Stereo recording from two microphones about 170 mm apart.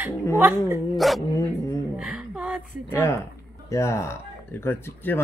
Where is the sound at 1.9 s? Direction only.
5° right (ahead or behind).